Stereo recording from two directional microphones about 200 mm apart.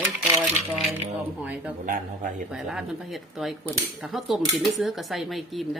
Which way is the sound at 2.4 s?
5° right (ahead or behind).